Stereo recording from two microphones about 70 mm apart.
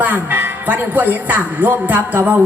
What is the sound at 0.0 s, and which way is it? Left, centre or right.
Speech, right.